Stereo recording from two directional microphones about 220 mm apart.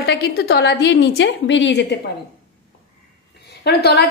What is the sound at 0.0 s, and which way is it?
A woman's voice, 50° left (ahead or behind).